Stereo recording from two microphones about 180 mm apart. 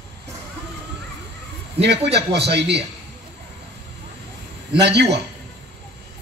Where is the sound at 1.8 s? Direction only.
70° right (ahead or behind).